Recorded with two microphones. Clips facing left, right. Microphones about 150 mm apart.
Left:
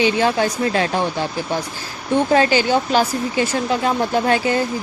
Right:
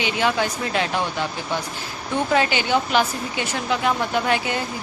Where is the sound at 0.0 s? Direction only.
35° left (ahead or behind).